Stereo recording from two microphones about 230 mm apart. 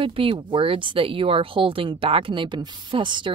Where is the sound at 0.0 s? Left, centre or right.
Right.